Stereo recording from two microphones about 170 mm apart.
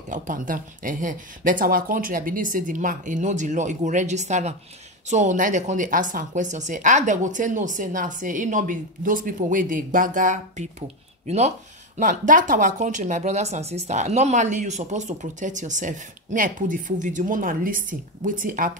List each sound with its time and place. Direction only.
0.1 s speech: 50° right (ahead or behind)
12.0 s speech: 50° right (ahead or behind)